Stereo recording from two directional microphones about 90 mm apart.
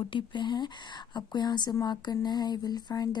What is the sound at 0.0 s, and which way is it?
Speech, 60° left (ahead or behind).